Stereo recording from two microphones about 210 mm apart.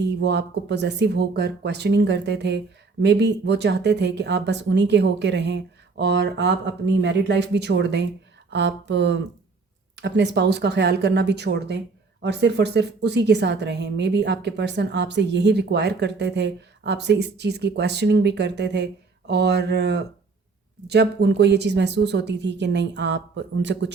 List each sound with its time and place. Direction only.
0.1 s speech: 55° right (ahead or behind)